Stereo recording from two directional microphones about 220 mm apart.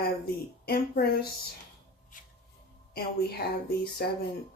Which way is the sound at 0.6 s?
45° left (ahead or behind).